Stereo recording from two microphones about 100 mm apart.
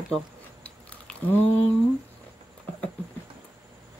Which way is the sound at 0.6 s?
15° left (ahead or behind).